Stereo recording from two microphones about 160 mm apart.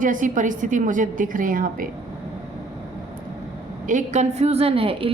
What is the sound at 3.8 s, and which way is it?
A woman's voice, 50° right (ahead or behind).